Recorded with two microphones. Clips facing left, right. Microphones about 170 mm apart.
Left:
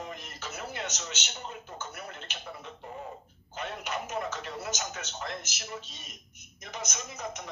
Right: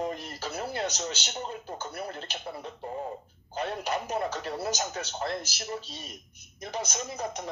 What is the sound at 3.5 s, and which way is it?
A man's voice, 35° right (ahead or behind).